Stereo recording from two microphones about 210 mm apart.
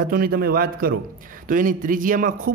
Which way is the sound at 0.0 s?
45° right (ahead or behind).